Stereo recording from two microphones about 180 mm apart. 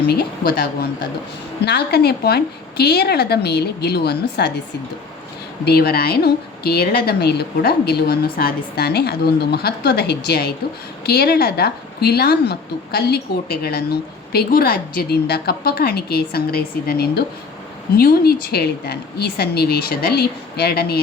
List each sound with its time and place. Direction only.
0.1 s a woman's voice: 65° left (ahead or behind)
5.6 s a woman's voice: 60° left (ahead or behind)